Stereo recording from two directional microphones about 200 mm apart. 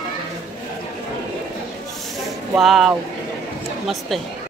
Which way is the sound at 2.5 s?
Centre (ahead or behind).